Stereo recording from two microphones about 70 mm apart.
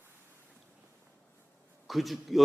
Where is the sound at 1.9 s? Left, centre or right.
Centre.